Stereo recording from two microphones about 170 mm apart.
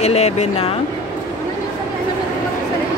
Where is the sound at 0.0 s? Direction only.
40° left (ahead or behind).